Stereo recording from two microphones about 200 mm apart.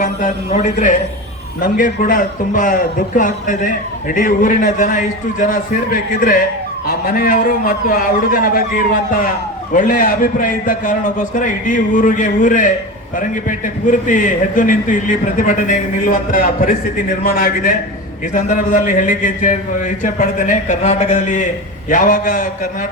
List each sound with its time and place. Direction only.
0.0 s a man's voice: 40° left (ahead or behind)
14.1 s a man's voice: 40° left (ahead or behind)